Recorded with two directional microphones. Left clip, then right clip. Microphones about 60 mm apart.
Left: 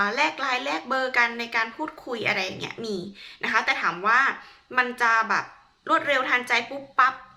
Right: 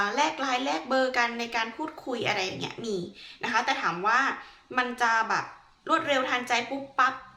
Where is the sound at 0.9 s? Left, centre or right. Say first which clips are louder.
Left 3 dB; centre.